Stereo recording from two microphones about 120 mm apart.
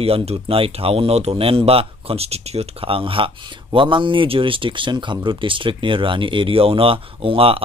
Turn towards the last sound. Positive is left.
turn(degrees=-50)  # may be behind; listen again after turning